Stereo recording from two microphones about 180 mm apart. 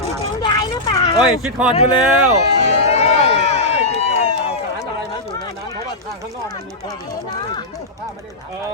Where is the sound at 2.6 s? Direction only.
35° left (ahead or behind).